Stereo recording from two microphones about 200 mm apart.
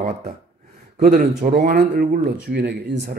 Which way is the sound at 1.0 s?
45° right (ahead or behind).